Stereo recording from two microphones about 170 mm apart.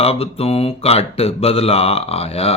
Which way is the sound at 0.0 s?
35° left (ahead or behind).